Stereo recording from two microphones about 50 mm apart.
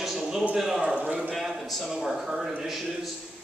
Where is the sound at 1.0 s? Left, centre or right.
Right.